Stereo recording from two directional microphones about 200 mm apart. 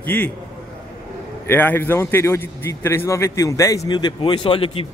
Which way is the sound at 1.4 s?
10° left (ahead or behind).